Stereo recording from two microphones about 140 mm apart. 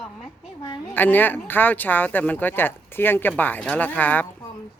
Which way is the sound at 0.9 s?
15° left (ahead or behind).